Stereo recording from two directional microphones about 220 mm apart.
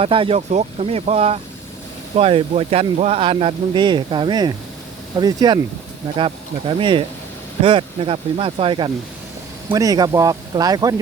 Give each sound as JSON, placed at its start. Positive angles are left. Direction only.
{"t": 0.0, "sound": "speech", "side_deg": -25}